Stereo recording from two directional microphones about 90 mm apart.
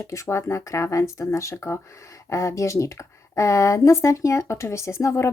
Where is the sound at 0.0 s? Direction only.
35° left (ahead or behind).